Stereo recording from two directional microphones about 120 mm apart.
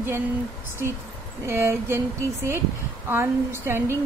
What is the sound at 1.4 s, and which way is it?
Speech, 20° right (ahead or behind).